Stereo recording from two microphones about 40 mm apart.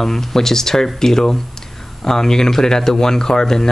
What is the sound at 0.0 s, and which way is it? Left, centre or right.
Speech, centre.